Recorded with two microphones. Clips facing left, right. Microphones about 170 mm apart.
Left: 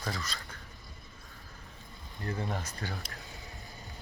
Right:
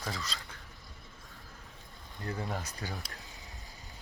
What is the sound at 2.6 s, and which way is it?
Speech, 15° right (ahead or behind).